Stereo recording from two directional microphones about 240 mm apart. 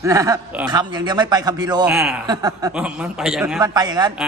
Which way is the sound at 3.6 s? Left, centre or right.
Centre.